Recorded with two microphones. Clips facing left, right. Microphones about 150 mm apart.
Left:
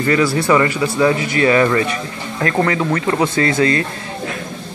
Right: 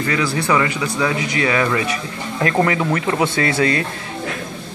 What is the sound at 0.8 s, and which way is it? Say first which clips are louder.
Speech: left 6 dB; 10° left (ahead or behind).